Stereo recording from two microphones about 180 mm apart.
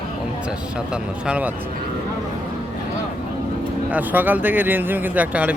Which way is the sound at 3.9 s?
10° right (ahead or behind).